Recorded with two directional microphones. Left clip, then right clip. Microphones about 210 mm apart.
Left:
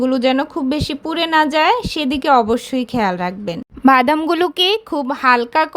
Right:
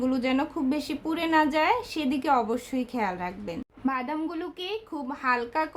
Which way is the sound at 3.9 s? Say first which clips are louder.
Left 18 dB; 50° left (ahead or behind).